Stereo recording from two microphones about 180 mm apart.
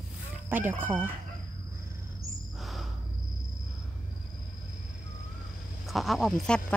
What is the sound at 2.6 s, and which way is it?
Cricket, centre (ahead or behind).